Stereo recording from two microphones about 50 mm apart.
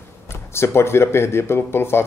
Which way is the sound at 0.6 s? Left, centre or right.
Left.